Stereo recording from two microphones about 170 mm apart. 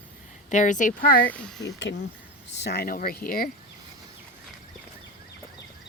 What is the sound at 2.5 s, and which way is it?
Speech, 75° left (ahead or behind).